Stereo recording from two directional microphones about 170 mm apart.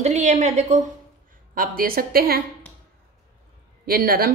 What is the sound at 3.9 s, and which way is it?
Speech, 60° right (ahead or behind).